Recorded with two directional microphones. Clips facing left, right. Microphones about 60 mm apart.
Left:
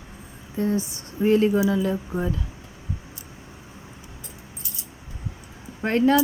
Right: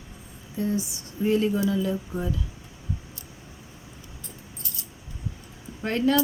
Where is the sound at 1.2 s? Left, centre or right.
Left.